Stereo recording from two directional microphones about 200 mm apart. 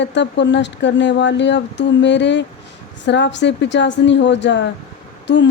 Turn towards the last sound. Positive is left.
turn(degrees=60)  # may be behind; listen again after turning